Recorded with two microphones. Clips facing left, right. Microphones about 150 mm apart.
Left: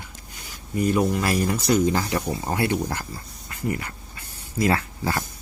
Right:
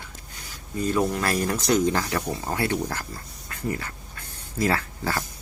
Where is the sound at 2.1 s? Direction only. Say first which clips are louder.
Left 2 dB; 20° left (ahead or behind).